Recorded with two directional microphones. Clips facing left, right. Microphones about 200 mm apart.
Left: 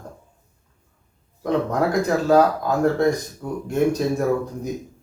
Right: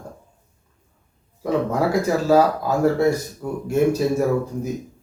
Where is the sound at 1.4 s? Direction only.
10° right (ahead or behind).